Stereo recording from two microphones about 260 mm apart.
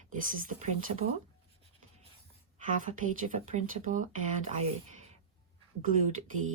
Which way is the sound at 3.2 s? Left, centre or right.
Right.